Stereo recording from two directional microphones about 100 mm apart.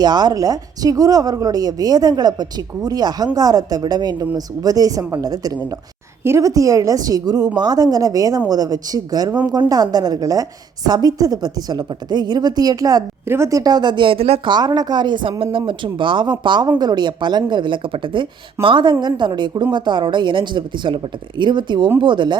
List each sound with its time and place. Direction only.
0.0 s a woman's voice: 45° right (ahead or behind)
13.2 s speech: 25° right (ahead or behind); by 14.4 s 85° right
14.4 s speech: 45° right (ahead or behind)